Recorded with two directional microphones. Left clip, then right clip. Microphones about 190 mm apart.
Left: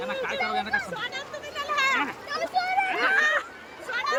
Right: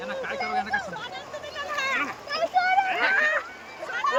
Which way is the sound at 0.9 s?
45° left (ahead or behind).